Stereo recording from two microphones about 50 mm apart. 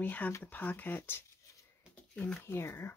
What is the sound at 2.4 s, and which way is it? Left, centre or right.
Speech, left.